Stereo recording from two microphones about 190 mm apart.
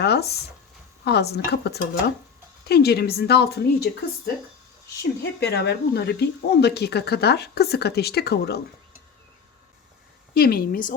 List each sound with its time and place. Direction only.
0.0 s speech: 60° left (ahead or behind)
5.4 s speech: 60° left (ahead or behind)
10.3 s a woman's voice: 55° left (ahead or behind)